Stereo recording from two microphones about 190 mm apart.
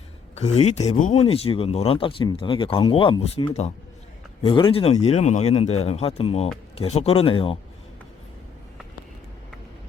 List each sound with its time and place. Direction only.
0.3 s speech: 35° left (ahead or behind)